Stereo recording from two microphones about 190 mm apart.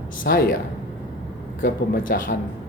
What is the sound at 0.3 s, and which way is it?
Speech, 55° left (ahead or behind).